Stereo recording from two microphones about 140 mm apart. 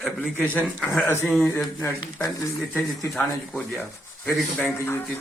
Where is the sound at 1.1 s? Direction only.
15° left (ahead or behind).